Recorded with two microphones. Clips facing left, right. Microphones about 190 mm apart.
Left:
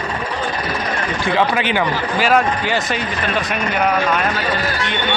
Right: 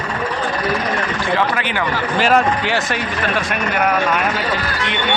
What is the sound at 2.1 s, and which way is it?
Speech, 5° left (ahead or behind).